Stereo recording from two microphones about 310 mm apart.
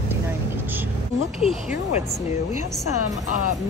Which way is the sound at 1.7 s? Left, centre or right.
Left.